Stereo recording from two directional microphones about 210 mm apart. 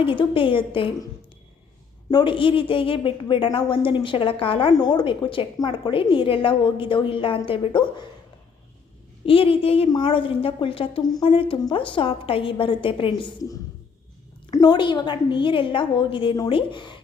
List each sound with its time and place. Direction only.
0.0 s a woman's voice: 25° left (ahead or behind)
2.0 s a woman's voice: 20° left (ahead or behind)
9.2 s a woman's voice: 25° left (ahead or behind)